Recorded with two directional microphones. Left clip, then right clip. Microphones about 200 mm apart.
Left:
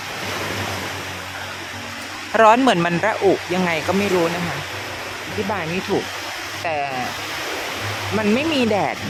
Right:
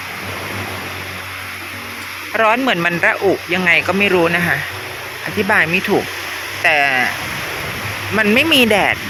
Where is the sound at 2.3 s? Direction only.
20° left (ahead or behind).